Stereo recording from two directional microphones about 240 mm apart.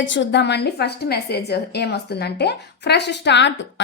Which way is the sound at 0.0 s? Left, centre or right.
Left.